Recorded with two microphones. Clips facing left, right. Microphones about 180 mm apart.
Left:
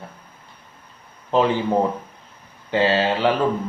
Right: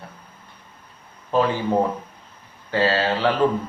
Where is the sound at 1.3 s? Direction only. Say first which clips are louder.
Left 1 dB; 15° left (ahead or behind).